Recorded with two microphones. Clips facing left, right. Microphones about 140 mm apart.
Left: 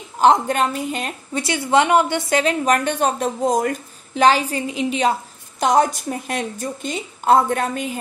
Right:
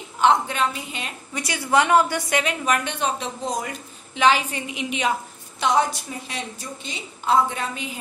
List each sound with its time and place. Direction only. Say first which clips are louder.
0.2 s a woman's voice: left 4 dB; 45° left (ahead or behind)
1.3 s a woman's voice: left 3 dB; 25° left (ahead or behind); by 8.0 s 50° left (ahead or behind)